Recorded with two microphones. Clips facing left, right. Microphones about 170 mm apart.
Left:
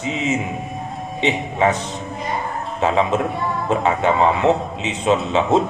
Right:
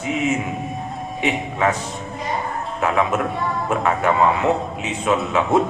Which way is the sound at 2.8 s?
25° left (ahead or behind).